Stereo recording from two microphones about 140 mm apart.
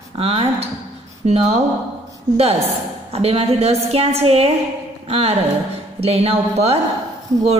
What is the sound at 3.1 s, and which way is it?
A woman's voice, 45° right (ahead or behind).